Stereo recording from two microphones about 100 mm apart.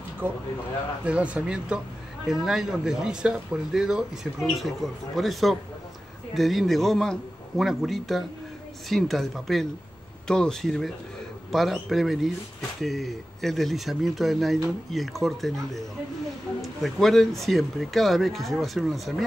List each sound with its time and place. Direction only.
0.2 s speech: 20° right (ahead or behind); by 19.2 s centre (ahead or behind)